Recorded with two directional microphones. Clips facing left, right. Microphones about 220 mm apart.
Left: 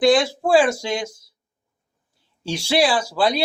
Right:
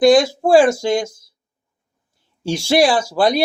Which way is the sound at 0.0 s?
40° right (ahead or behind).